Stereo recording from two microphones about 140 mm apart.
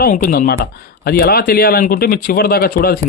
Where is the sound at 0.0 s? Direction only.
90° left.